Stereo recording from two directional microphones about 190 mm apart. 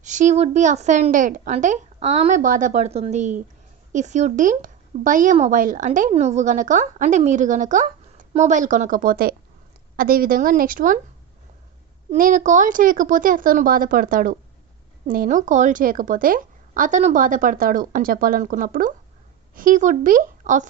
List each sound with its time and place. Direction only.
0.0 s a woman's voice: 40° right (ahead or behind)
12.1 s a woman's voice: 45° right (ahead or behind)